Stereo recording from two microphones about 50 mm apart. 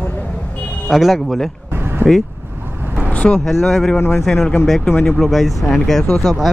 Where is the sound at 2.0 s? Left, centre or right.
Right.